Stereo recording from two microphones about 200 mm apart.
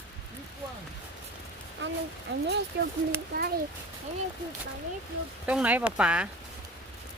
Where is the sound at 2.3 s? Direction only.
60° right (ahead or behind).